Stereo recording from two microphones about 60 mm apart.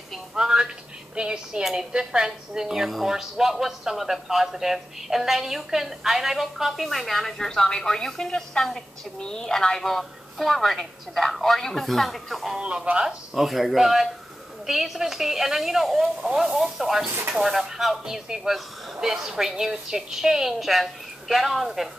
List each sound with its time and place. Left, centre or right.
0.3 s a sound: centre
1.1 s a woman's voice: centre
12.5 s speech: centre
13.3 s a woman's voice: centre